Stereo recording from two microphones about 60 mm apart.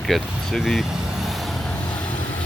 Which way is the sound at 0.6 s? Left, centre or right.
Centre.